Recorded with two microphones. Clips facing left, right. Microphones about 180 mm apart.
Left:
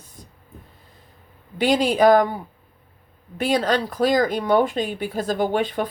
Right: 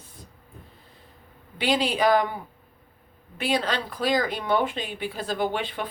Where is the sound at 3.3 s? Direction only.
45° left (ahead or behind).